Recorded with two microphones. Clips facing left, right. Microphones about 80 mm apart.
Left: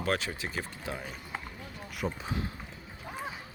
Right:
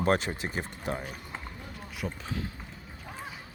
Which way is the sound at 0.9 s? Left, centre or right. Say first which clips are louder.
Right 6 dB; right.